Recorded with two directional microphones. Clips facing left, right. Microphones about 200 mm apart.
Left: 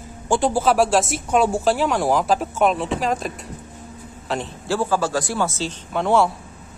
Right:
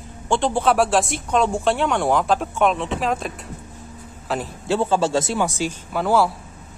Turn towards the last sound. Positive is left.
turn(degrees=-5)  # may be behind; listen again after turning